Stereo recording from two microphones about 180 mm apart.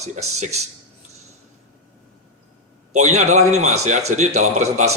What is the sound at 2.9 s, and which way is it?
Speech, 40° right (ahead or behind).